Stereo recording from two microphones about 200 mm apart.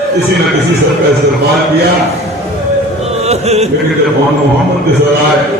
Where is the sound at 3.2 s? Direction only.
30° right (ahead or behind).